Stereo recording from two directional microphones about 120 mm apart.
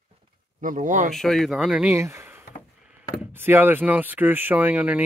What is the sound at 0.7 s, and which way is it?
Speech, 90° right.